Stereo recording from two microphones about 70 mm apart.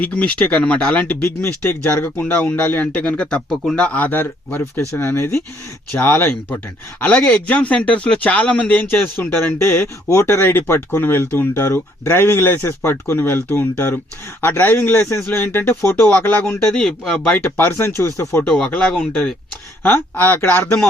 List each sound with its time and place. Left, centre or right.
0.0 s a man's voice: left
3.9 s a man's voice: left
7.0 s a man's voice: centre; by 16.0 s left
16.0 s a man's voice: left
16.7 s speech: centre
17.4 s speech: left
18.5 s speech: centre
19.8 s a man's voice: left